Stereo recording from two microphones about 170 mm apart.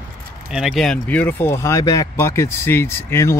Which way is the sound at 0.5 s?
5° right (ahead or behind).